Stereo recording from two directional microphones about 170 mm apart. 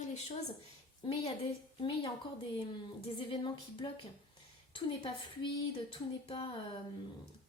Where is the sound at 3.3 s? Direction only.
30° left (ahead or behind).